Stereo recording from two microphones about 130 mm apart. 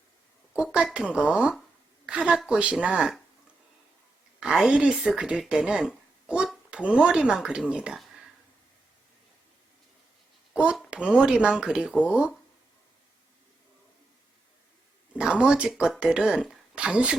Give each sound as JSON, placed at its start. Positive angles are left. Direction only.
{"t": 0.5, "sound": "speech", "side_deg": -5}
{"t": 4.4, "sound": "speech", "side_deg": -5}
{"t": 10.5, "sound": "speech", "side_deg": -10}
{"t": 15.1, "sound": "speech", "side_deg": -10}